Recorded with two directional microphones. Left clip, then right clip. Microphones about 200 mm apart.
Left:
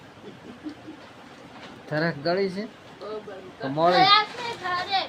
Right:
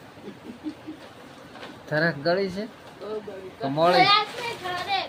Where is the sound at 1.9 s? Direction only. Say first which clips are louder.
Right 2 dB; 5° left (ahead or behind).